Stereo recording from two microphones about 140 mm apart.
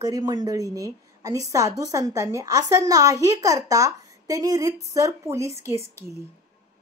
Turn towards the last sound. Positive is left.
turn(degrees=-20)  # may be behind; listen again after turning